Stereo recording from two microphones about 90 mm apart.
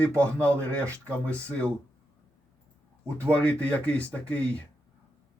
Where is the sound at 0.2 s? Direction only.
15° left (ahead or behind).